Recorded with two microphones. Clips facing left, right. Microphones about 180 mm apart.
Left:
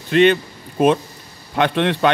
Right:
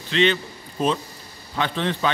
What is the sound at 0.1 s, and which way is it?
A man's voice, 55° left (ahead or behind).